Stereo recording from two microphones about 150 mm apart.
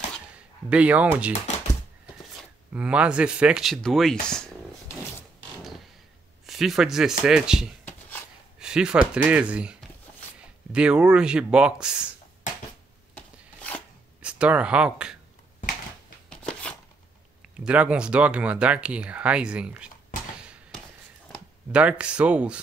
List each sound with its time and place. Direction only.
0.7 s speech: 10° right (ahead or behind)
2.7 s speech: 10° right (ahead or behind)
6.4 s speech: centre (ahead or behind)
8.5 s a sound: 5° right (ahead or behind)
9.1 s speech: 10° right (ahead or behind)
14.2 s speech: 10° right (ahead or behind)
16.3 s a sound: 5° left (ahead or behind)
17.6 s speech: 5° right (ahead or behind)
20.1 s a sound: 65° left (ahead or behind)
21.3 s speech: 5° right (ahead or behind)